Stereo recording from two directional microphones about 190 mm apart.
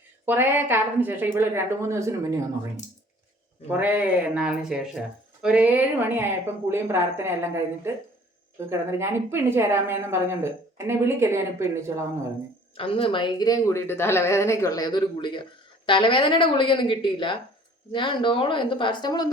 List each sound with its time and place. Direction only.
0.3 s speech: 10° right (ahead or behind)
3.7 s speech: 10° right (ahead or behind)
12.7 s speech: 30° left (ahead or behind)